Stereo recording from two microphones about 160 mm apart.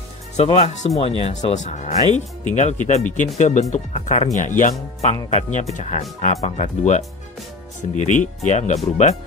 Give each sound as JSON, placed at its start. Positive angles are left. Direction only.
{"t": 0.4, "sound": "speech", "side_deg": 40}